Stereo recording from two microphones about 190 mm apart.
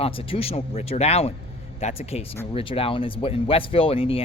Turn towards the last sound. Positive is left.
turn(degrees=30)  # may be behind; listen again after turning